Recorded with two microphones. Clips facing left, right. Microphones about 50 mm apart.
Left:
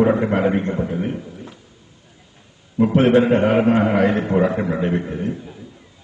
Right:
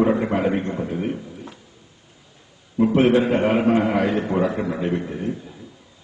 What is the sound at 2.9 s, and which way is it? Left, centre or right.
A man's voice, left.